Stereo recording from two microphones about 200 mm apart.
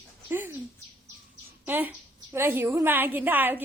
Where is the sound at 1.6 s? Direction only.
10° right (ahead or behind).